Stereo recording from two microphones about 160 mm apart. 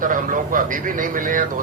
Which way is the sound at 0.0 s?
55° right (ahead or behind).